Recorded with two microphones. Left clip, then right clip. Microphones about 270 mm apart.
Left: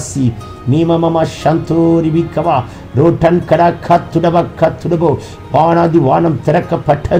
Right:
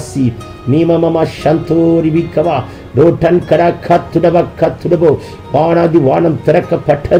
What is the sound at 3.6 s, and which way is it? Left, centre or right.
Speech, centre.